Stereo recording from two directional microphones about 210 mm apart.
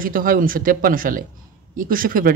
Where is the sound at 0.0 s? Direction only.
40° right (ahead or behind).